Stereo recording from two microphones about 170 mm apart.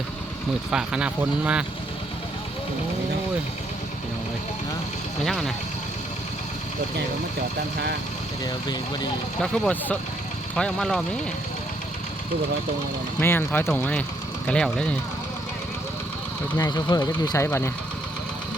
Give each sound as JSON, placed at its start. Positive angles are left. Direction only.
{"t": 0.7, "sound": "speech", "side_deg": -5}
{"t": 5.2, "sound": "speech", "side_deg": 0}
{"t": 9.4, "sound": "speech", "side_deg": 5}
{"t": 13.1, "sound": "speech", "side_deg": 15}
{"t": 16.6, "sound": "speech", "side_deg": 25}